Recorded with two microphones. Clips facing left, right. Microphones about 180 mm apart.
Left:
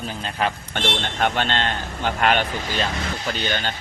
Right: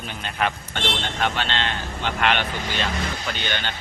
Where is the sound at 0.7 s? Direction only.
50° left (ahead or behind).